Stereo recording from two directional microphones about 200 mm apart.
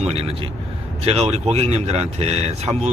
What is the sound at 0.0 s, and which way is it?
Speech, 30° right (ahead or behind).